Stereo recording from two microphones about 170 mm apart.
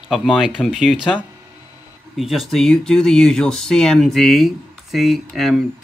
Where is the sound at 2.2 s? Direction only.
Centre (ahead or behind).